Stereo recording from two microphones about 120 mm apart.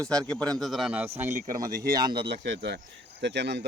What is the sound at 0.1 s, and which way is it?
A man's voice, 5° left (ahead or behind).